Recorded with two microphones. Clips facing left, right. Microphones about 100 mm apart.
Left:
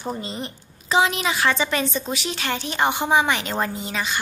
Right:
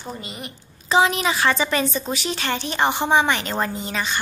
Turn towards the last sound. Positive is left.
turn(degrees=5)  # may be behind; listen again after turning